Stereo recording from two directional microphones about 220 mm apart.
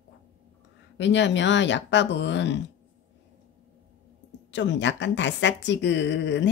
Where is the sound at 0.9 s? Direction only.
55° left (ahead or behind).